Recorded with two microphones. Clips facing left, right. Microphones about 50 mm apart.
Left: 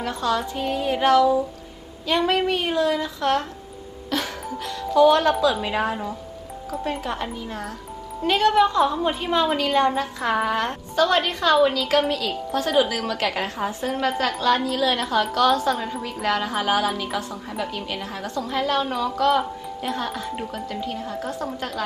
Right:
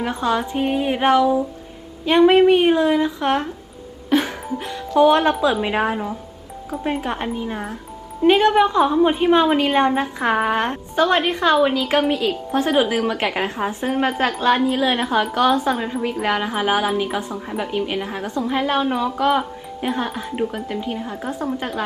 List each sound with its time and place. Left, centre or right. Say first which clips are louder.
0.0 s a woman's voice: right 3 dB; right
4.1 s music: right 7 dB; right
5.4 s a woman's voice: right 3 dB; right